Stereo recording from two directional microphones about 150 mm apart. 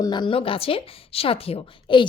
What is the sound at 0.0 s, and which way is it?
A woman's voice, 30° left (ahead or behind).